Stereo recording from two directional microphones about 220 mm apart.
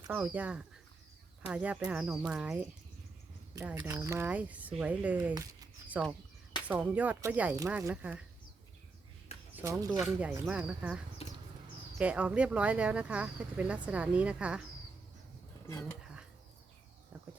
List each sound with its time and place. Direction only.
0.1 s speech: 5° right (ahead or behind)
5.3 s a sound: 15° right (ahead or behind)
6.7 s speech: 5° right (ahead or behind)
9.6 s speech: 10° right (ahead or behind)